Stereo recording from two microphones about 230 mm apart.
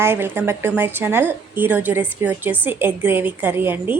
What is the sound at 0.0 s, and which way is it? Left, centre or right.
A woman's voice, centre.